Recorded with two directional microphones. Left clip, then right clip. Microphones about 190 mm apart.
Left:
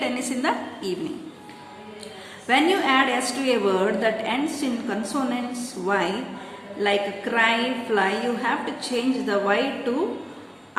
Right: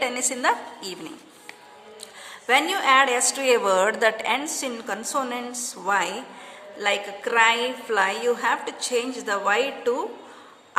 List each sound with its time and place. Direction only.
0.0 s a woman's voice: 45° right (ahead or behind)
2.5 s a woman's voice: 50° right (ahead or behind)